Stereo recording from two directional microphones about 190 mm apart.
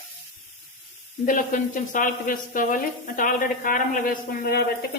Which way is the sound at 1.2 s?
45° left (ahead or behind).